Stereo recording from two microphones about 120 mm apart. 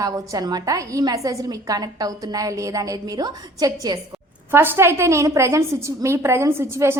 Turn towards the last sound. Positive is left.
turn(degrees=-20)  # may be behind; listen again after turning